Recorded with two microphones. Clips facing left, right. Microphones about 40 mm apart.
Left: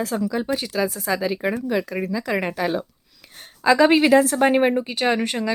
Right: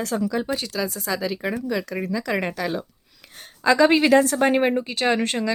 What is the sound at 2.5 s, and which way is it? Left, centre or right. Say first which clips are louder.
Speech: left 3 dB; centre.